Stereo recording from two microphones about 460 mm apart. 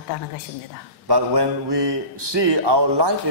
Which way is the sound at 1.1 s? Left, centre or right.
Right.